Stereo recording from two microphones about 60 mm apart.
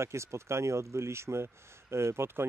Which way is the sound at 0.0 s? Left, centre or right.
Right.